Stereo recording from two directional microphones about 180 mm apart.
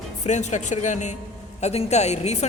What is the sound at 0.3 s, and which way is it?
A woman's voice, 40° left (ahead or behind).